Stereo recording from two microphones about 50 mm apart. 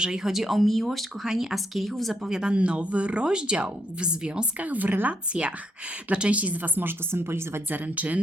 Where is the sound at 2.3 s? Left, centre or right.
Centre.